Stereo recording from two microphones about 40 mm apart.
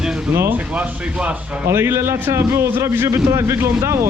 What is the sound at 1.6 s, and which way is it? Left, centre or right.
A man's voice, right.